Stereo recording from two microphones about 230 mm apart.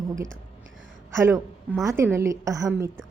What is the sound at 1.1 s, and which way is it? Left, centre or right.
A woman's voice, centre.